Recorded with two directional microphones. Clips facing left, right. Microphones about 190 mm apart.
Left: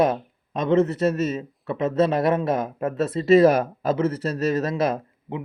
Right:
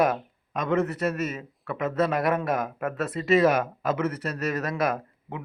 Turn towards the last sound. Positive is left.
turn(degrees=20)  # may be behind; listen again after turning